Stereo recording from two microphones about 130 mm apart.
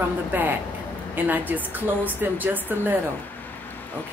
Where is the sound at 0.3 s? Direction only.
15° right (ahead or behind).